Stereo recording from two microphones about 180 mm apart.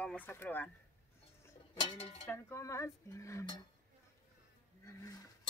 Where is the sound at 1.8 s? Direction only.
35° left (ahead or behind).